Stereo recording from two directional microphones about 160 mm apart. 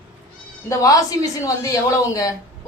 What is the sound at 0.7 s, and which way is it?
A woman's voice, 20° left (ahead or behind).